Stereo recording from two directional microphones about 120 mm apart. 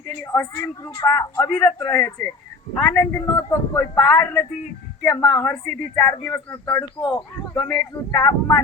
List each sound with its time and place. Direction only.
0.2 s speech: 20° left (ahead or behind)
7.0 s speech: 35° left (ahead or behind)